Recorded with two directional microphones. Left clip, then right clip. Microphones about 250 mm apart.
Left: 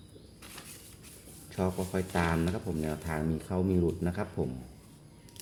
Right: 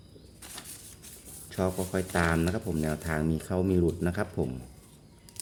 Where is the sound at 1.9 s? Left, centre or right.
Centre.